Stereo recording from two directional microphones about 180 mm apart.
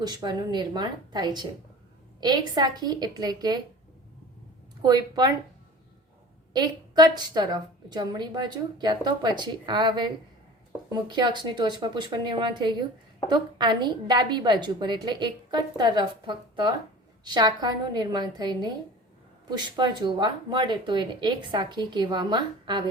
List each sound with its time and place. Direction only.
0.0 s a woman's voice: 25° right (ahead or behind)
4.8 s a woman's voice: 25° right (ahead or behind)
6.5 s a woman's voice: 25° right (ahead or behind)